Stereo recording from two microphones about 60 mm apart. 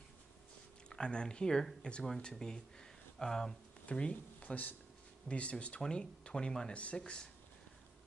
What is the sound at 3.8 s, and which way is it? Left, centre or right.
Speech, left.